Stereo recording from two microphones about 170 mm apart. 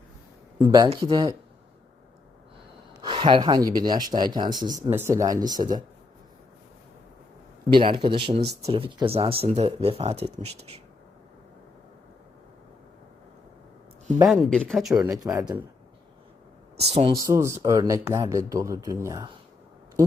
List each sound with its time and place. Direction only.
0.6 s speech: 25° right (ahead or behind)
3.0 s speech: 30° right (ahead or behind)
4.9 s speech: 15° right (ahead or behind)
7.7 s speech: 30° right (ahead or behind)
14.3 s speech: 5° left (ahead or behind)
15.0 s speech: 20° right (ahead or behind)
16.7 s speech: 35° right (ahead or behind)
17.2 s speech: 20° right (ahead or behind)